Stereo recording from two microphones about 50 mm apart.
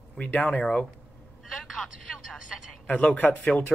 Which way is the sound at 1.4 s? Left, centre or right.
Centre.